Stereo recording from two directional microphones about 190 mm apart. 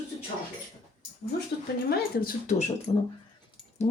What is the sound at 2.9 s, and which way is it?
Speech, 30° left (ahead or behind).